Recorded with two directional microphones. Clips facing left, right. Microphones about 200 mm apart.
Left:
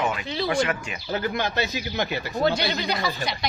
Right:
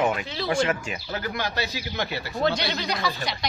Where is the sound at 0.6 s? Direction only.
35° right (ahead or behind).